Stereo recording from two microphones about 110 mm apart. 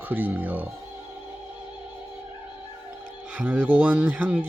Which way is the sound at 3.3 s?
10° right (ahead or behind).